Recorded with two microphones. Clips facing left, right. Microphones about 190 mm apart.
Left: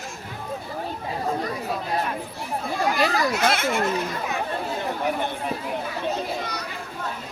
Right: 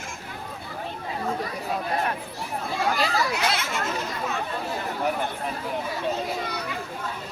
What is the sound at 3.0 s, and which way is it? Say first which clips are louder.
Speech: left 3 dB; 50° left (ahead or behind).